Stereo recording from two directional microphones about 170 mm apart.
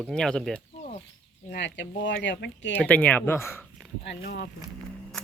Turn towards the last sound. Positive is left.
turn(degrees=80)